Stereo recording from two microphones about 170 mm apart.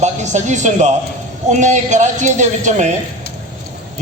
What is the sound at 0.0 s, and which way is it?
A man's voice, 45° right (ahead or behind).